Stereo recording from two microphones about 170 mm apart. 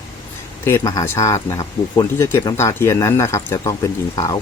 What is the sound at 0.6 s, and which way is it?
Speech, 20° left (ahead or behind).